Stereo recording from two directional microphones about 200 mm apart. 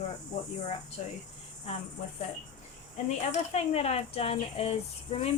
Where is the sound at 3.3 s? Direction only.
30° left (ahead or behind).